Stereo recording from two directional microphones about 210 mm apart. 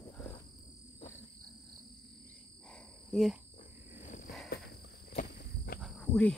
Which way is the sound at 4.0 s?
35° left (ahead or behind).